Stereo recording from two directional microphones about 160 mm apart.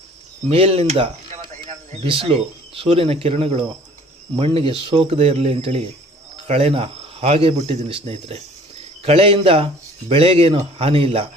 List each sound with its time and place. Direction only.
0.4 s speech: 40° right (ahead or behind)